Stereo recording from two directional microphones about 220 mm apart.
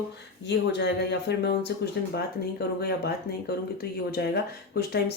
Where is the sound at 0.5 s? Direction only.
50° left (ahead or behind).